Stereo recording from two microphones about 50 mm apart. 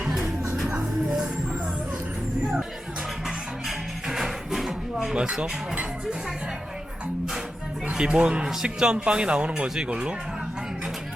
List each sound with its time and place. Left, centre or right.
0.7 s music: centre
3.2 s music: centre
7.9 s speech: centre